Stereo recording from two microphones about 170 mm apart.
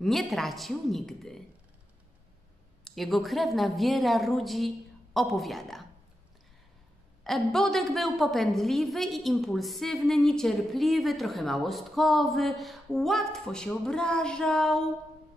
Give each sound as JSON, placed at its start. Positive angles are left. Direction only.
{"t": 0.0, "sound": "a woman's voice", "side_deg": 0}
{"t": 2.8, "sound": "a woman's voice", "side_deg": 0}
{"t": 7.2, "sound": "a woman's voice", "side_deg": 0}